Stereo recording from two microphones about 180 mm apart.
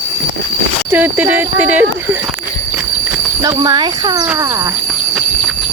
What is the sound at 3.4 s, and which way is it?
Speech, 20° right (ahead or behind).